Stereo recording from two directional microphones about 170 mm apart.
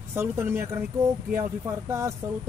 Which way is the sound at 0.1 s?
15° right (ahead or behind).